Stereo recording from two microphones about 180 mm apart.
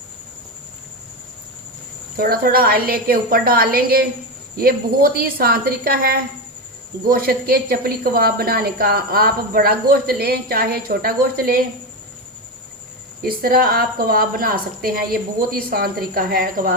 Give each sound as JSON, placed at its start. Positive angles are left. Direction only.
{"t": 2.1, "sound": "a woman's voice", "side_deg": -55}
{"t": 13.2, "sound": "a woman's voice", "side_deg": -55}